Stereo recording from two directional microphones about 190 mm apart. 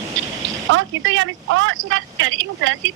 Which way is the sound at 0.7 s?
90° right.